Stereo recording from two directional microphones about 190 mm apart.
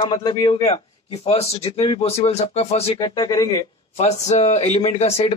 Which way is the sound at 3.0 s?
20° left (ahead or behind).